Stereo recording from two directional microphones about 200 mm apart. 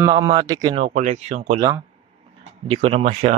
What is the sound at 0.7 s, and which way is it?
Speech, 35° right (ahead or behind).